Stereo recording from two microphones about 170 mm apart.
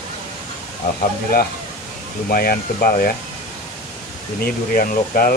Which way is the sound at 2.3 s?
60° left (ahead or behind).